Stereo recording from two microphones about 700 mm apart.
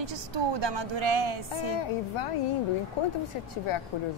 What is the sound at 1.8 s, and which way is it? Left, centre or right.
Speech, left.